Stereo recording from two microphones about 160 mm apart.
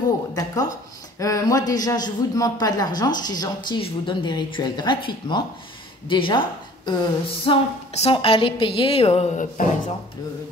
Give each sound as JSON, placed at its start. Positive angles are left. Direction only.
{"t": 0.3, "sound": "a man's voice", "side_deg": 25}